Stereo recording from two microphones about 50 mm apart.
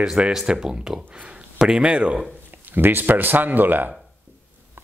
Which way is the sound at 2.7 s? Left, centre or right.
Right.